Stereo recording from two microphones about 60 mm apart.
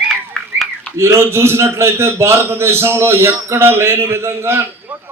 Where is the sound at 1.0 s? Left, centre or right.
Right.